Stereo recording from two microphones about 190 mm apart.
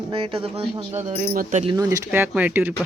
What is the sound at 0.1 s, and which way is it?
Speech, 30° right (ahead or behind).